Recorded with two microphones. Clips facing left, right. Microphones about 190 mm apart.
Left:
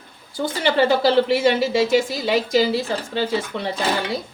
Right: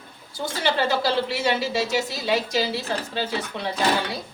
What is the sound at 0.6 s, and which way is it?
A woman's voice, 55° left (ahead or behind).